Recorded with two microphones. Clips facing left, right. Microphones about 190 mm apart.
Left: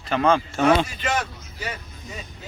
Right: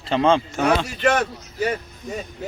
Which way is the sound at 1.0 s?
60° right (ahead or behind).